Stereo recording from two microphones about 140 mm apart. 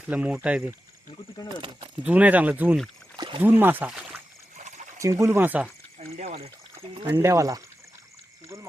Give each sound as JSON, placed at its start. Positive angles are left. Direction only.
{"t": 0.1, "sound": "speech", "side_deg": -5}
{"t": 1.5, "sound": "speech", "side_deg": -40}
{"t": 2.0, "sound": "speech", "side_deg": -10}
{"t": 3.2, "sound": "speech", "side_deg": -35}
{"t": 3.6, "sound": "speech", "side_deg": -15}
{"t": 4.5, "sound": "a sound", "side_deg": -60}
{"t": 4.9, "sound": "speech", "side_deg": -25}
{"t": 6.9, "sound": "speech", "side_deg": -30}